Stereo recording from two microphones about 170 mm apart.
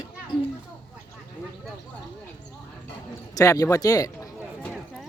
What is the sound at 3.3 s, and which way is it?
Speech, 20° left (ahead or behind).